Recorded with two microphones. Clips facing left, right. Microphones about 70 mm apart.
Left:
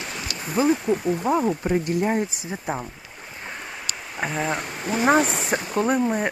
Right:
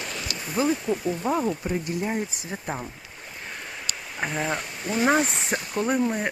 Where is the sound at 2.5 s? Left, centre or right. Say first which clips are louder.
Left 3 dB; centre.